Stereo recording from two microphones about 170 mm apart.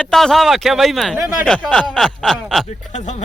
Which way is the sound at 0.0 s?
5° left (ahead or behind).